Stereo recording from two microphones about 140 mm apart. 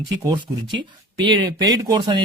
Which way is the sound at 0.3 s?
35° right (ahead or behind).